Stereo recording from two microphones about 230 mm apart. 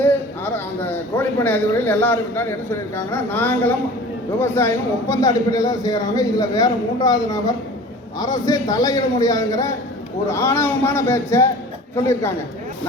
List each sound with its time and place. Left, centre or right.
0.0 s a man's voice: centre